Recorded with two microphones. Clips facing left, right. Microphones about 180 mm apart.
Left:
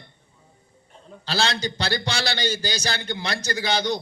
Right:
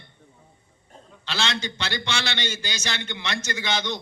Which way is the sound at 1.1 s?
35° left (ahead or behind).